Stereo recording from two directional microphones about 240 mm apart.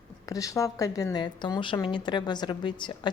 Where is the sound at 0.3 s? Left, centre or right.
Centre.